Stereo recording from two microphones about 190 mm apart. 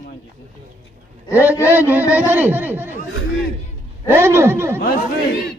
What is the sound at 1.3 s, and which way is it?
A man's voice, 10° right (ahead or behind).